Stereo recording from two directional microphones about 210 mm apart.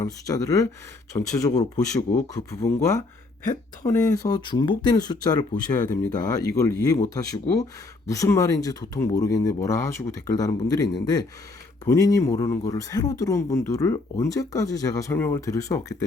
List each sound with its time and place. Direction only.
0.0 s speech: 15° left (ahead or behind)